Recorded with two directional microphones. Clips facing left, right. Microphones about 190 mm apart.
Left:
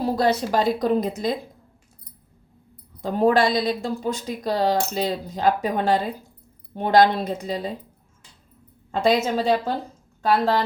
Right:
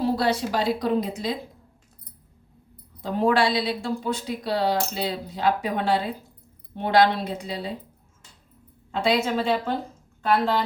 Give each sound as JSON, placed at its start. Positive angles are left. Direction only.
{"t": 0.0, "sound": "speech", "side_deg": 45}
{"t": 3.0, "sound": "speech", "side_deg": 45}
{"t": 8.9, "sound": "speech", "side_deg": 45}